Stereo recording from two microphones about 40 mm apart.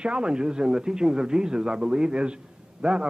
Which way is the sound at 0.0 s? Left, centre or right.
Right.